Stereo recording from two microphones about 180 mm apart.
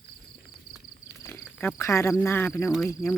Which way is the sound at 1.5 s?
15° left (ahead or behind).